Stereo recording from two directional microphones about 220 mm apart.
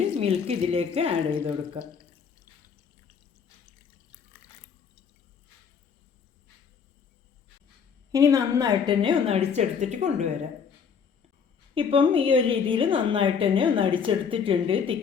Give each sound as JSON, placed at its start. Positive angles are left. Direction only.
{"t": 0.2, "sound": "a woman's voice", "side_deg": -25}
{"t": 8.1, "sound": "a woman's voice", "side_deg": -15}
{"t": 11.7, "sound": "a woman's voice", "side_deg": -25}